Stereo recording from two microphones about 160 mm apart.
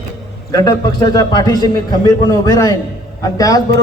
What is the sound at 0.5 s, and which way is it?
A man's voice, 25° left (ahead or behind).